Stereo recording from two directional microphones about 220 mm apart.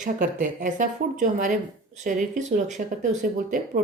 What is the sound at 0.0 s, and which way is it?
Speech, 35° right (ahead or behind).